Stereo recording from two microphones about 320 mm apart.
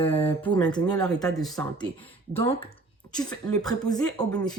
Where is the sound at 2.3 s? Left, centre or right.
Centre.